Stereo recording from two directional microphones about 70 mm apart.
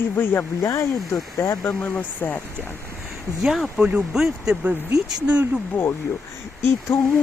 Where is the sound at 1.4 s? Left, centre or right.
Left.